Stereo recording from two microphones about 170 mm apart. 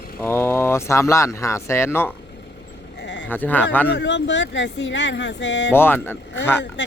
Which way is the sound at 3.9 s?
90° left.